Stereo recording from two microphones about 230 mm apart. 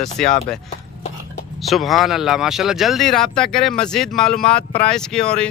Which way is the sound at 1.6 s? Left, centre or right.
Centre.